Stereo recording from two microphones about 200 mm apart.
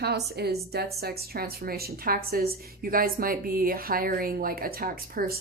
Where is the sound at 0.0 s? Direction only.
55° right (ahead or behind).